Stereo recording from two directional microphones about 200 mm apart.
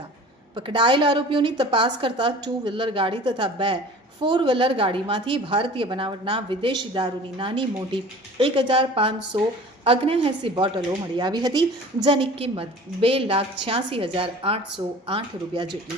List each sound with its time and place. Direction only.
0.5 s a woman's voice: 25° right (ahead or behind)